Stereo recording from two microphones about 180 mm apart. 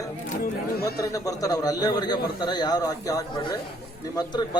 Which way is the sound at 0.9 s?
20° left (ahead or behind).